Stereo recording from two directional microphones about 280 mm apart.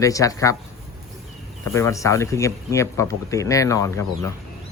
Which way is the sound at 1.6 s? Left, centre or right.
Centre.